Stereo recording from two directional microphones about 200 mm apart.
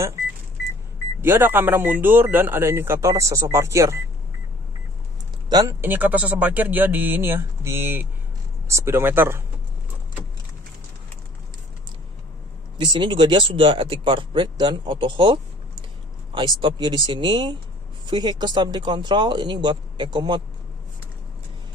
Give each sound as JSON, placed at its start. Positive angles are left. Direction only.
{"t": 1.2, "sound": "speech", "side_deg": -10}
{"t": 5.5, "sound": "speech", "side_deg": -15}
{"t": 12.7, "sound": "speech", "side_deg": -25}
{"t": 16.3, "sound": "speech", "side_deg": -25}